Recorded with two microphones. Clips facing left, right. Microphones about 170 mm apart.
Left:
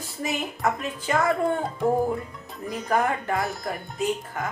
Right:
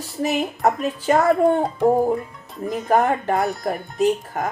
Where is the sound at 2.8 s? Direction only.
40° right (ahead or behind).